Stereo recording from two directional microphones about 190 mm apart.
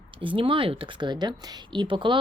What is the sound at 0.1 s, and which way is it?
Speech, 25° right (ahead or behind).